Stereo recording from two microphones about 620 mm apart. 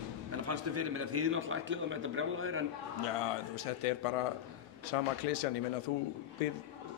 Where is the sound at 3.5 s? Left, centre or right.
Left.